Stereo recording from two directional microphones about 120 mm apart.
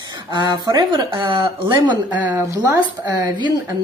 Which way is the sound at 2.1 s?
15° right (ahead or behind).